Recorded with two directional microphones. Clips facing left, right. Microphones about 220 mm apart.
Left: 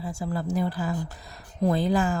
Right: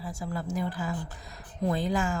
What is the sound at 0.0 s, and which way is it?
A woman's voice, 30° left (ahead or behind).